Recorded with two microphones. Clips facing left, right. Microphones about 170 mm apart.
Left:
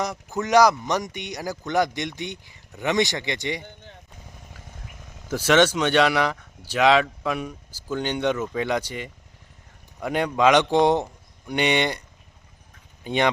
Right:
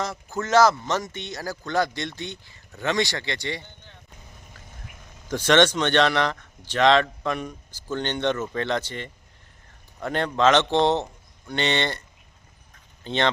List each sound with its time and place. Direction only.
0.0 s speech: 15° left (ahead or behind)
5.3 s speech: 5° left (ahead or behind)
13.1 s speech: 10° left (ahead or behind)